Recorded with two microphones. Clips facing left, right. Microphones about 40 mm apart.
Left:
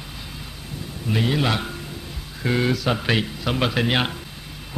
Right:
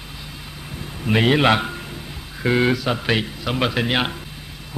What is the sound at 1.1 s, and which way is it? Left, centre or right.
Speech, right.